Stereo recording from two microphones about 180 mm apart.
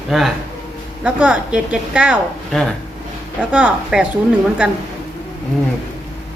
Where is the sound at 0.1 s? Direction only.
Centre (ahead or behind).